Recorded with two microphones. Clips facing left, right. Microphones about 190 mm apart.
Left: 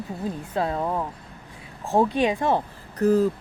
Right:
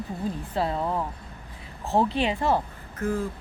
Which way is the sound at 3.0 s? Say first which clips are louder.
Left 8 dB; 40° left (ahead or behind).